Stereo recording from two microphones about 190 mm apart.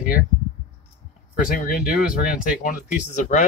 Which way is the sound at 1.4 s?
50° left (ahead or behind).